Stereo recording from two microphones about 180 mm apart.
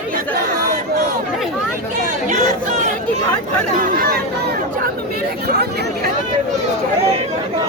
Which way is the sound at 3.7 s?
55° right (ahead or behind).